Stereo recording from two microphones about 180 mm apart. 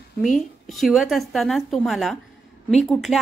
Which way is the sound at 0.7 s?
Centre (ahead or behind).